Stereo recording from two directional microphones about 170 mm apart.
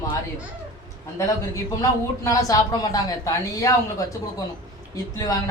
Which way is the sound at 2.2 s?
20° left (ahead or behind).